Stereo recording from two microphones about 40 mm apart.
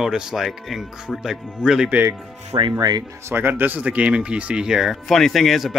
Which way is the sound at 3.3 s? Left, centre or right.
Right.